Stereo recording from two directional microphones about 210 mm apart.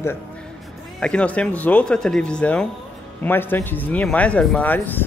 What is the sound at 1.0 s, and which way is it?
Speech, 5° left (ahead or behind).